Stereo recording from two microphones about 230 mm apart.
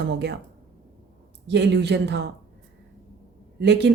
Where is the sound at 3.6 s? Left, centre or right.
Right.